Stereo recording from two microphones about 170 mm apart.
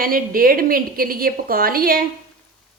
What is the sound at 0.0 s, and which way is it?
A woman's voice, 55° right (ahead or behind).